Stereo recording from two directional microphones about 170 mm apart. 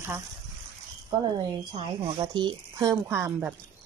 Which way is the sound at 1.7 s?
30° right (ahead or behind).